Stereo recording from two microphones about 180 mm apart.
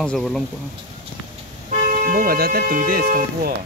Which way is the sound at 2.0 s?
50° right (ahead or behind).